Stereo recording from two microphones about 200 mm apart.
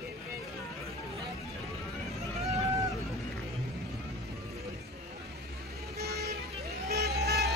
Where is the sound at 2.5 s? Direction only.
15° right (ahead or behind).